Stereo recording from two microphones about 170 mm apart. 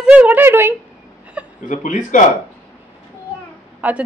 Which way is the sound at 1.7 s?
50° left (ahead or behind).